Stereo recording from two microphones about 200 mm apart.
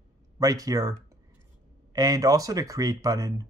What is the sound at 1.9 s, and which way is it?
Speech, 20° right (ahead or behind).